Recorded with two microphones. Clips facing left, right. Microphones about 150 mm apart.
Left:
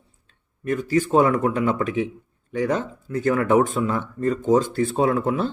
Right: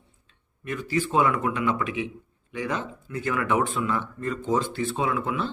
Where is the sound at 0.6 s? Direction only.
45° left (ahead or behind).